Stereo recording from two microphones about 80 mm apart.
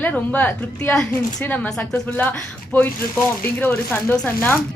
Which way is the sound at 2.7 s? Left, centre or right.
Left.